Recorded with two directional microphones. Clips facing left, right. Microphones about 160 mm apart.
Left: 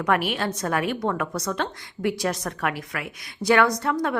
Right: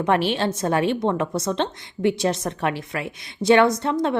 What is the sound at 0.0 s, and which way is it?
A woman's voice, 25° right (ahead or behind).